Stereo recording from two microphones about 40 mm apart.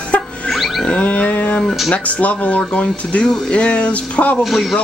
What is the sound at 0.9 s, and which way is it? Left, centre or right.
Dog, left.